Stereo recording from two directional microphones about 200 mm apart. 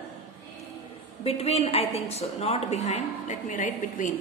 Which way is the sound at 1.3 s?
30° left (ahead or behind).